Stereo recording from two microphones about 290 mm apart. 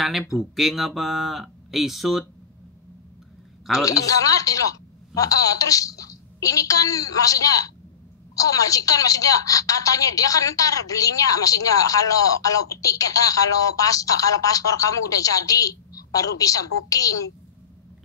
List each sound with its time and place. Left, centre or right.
0.0 s speech: centre
3.8 s a woman's voice: centre